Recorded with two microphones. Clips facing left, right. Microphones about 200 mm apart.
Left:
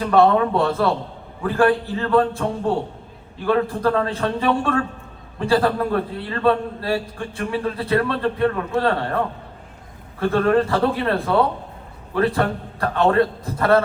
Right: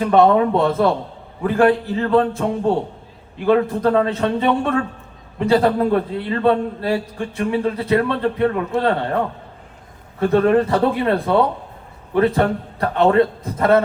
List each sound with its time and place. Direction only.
0.0 s a man's voice: 20° right (ahead or behind)
10.2 s a man's voice: 20° right (ahead or behind)